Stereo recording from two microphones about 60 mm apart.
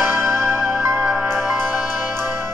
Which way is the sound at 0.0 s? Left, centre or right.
Right.